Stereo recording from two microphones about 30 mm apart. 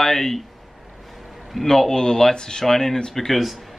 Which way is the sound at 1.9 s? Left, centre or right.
Left.